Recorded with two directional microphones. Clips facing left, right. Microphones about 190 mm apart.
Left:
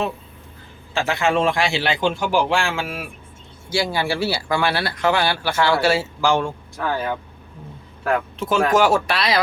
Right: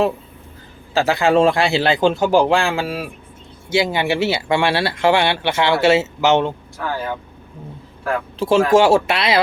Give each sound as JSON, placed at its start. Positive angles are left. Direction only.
{"t": 0.9, "sound": "speech", "side_deg": -35}
{"t": 3.7, "sound": "speech", "side_deg": -20}
{"t": 8.4, "sound": "speech", "side_deg": -30}